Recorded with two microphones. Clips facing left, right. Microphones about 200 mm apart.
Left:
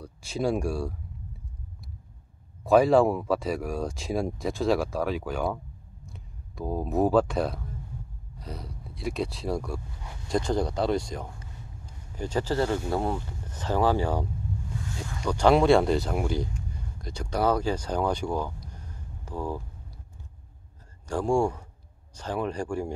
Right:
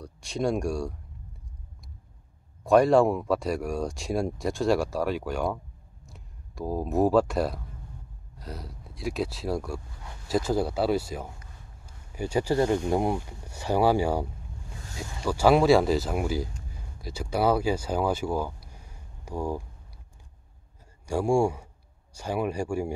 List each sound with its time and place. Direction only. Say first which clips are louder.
0.0 s speech: even; 5° left (ahead or behind)
2.6 s speech: even; centre (ahead or behind)
15.2 s speech: even; 5° right (ahead or behind)
21.1 s speech: right 1 dB; 10° right (ahead or behind)